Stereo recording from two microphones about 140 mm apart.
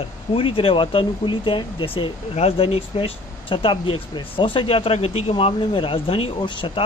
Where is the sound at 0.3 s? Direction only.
40° left (ahead or behind).